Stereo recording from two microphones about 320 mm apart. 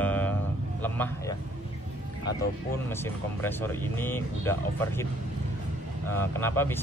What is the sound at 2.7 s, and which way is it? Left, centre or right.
Speech, centre.